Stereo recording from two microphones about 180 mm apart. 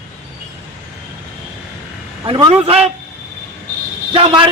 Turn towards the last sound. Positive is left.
turn(degrees=-30)  # may be behind; listen again after turning